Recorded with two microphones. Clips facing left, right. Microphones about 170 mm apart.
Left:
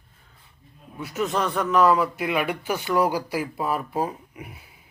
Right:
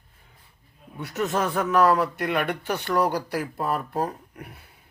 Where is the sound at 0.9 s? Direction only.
Centre (ahead or behind).